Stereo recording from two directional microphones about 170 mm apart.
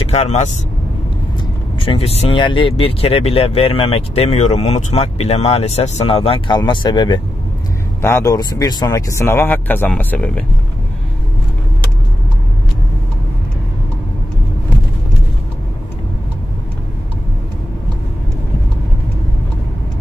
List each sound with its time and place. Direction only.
0.1 s speech: 40° left (ahead or behind)
1.8 s speech: 35° left (ahead or behind); by 10.4 s 10° left (ahead or behind)